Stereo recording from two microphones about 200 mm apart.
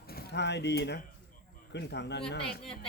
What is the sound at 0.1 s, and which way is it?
Speech, 50° left (ahead or behind).